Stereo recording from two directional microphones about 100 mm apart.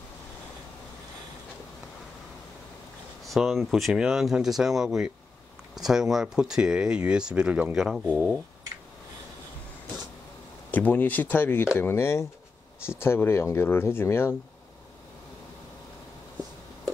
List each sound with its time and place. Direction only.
3.3 s speech: centre (ahead or behind)
7.7 s speech: centre (ahead or behind)
10.7 s speech: 20° left (ahead or behind)